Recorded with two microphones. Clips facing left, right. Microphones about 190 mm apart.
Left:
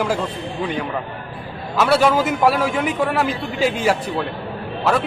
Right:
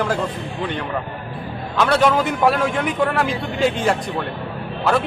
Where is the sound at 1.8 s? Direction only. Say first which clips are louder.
Left 1 dB; 5° left (ahead or behind).